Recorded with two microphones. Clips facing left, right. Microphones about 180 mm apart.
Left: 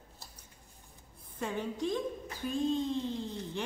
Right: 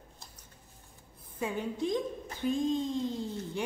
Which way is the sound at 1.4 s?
10° right (ahead or behind).